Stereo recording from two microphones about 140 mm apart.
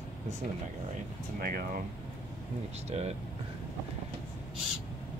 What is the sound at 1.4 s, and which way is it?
Speech, 90° right.